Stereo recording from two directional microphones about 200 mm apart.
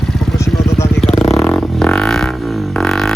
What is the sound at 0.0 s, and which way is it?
Vehicle, centre (ahead or behind).